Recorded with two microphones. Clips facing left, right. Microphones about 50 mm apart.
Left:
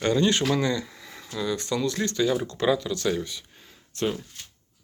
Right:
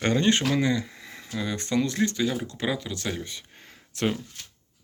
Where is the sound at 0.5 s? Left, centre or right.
Centre.